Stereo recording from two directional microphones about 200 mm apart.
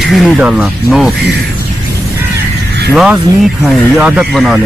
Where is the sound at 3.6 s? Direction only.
5° right (ahead or behind).